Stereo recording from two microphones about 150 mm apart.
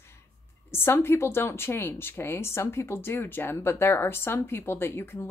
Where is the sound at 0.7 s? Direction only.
15° left (ahead or behind).